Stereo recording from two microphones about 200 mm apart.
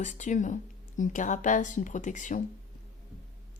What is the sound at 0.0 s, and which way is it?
Speech, 35° left (ahead or behind).